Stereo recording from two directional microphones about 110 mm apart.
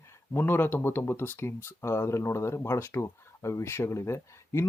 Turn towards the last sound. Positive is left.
turn(degrees=25)  # may be behind; listen again after turning